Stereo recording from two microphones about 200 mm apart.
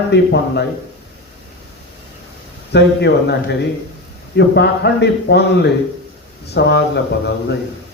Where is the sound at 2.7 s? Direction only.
60° left (ahead or behind).